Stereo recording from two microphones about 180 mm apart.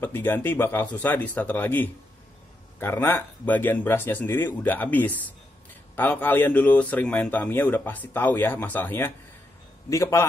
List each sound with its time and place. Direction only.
0.0 s speech: 10° left (ahead or behind)